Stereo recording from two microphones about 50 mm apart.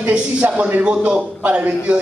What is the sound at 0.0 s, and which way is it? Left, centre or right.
A man's voice, right.